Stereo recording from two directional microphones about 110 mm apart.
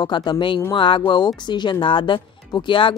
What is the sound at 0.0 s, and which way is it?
Speech, 45° left (ahead or behind).